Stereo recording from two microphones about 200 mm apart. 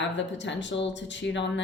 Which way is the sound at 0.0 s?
65° left (ahead or behind).